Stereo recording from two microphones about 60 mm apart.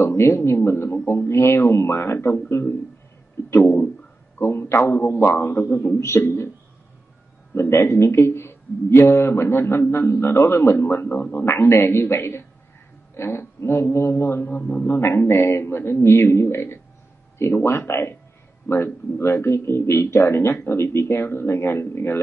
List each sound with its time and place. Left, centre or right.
0.0 s speech: left
3.4 s a man's voice: left
5.9 s a man's voice: left
7.5 s a man's voice: left
14.6 s speech: left
14.9 s a man's voice: left